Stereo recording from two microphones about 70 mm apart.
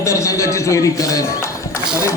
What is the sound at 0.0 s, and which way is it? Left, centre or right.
A man's voice, left.